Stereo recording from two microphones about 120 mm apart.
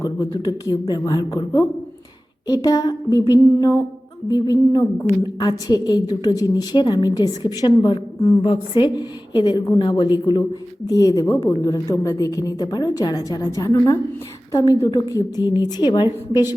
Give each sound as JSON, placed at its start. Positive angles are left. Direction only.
{"t": 0.0, "sound": "a woman's voice", "side_deg": 30}
{"t": 8.2, "sound": "a woman's voice", "side_deg": 45}